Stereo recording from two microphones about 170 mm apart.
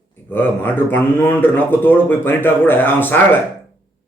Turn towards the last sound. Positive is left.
turn(degrees=10)  # may be behind; listen again after turning